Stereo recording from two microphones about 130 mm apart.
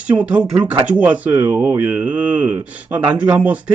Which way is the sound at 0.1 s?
10° right (ahead or behind).